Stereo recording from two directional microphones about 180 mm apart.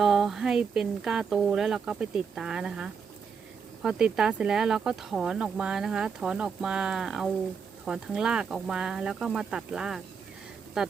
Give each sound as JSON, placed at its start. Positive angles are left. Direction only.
{"t": 0.0, "sound": "speech", "side_deg": 0}